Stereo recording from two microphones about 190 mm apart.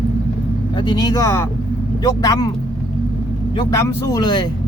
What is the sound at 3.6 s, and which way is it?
Speech, 20° left (ahead or behind).